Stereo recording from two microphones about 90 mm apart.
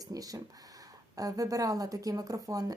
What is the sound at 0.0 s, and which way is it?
Speech, 40° right (ahead or behind).